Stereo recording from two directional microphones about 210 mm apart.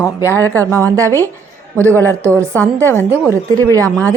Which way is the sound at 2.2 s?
15° right (ahead or behind).